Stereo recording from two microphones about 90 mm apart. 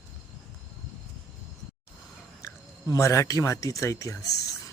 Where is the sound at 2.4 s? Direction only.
35° left (ahead or behind).